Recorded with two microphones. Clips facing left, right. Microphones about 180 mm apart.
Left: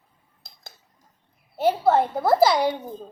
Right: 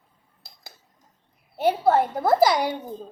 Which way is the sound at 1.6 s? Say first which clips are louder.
Even; 15° right (ahead or behind).